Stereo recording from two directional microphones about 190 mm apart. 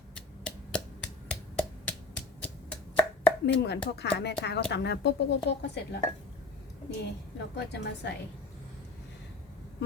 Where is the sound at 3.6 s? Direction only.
60° left (ahead or behind).